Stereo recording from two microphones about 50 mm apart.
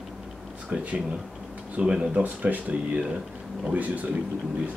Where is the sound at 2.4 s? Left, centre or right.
Right.